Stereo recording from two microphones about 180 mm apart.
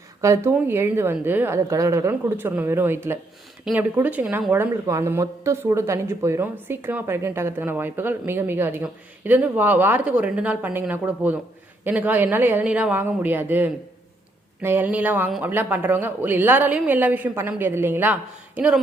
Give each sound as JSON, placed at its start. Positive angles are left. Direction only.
{"t": 0.2, "sound": "speech", "side_deg": -15}